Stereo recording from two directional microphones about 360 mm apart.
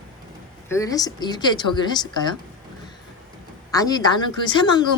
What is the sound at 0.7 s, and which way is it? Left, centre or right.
Speech, centre.